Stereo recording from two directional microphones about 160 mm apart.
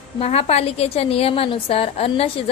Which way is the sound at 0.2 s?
40° left (ahead or behind).